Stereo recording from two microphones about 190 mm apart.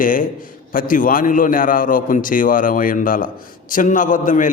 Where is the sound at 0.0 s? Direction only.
45° left (ahead or behind).